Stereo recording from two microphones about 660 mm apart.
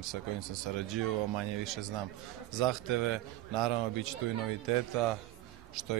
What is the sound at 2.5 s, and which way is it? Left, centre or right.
Speech, right.